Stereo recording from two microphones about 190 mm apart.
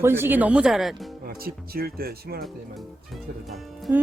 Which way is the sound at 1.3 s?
50° right (ahead or behind).